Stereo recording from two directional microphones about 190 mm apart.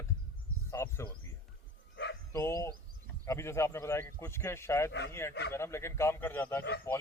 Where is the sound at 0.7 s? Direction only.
15° left (ahead or behind).